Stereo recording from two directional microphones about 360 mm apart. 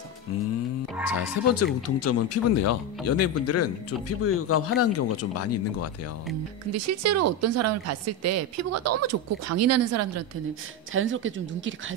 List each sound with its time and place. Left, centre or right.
1.2 s speech: left
6.7 s speech: right
10.9 s speech: right